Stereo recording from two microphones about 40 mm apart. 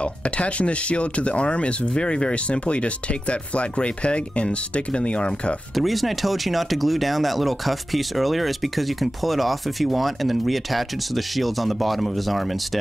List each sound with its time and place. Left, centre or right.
0.0 s speech: left
5.8 s speech: centre